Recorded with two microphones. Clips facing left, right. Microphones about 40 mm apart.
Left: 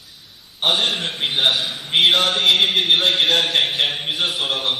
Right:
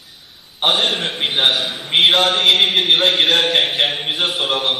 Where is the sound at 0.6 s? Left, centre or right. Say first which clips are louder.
Right 2 dB; centre.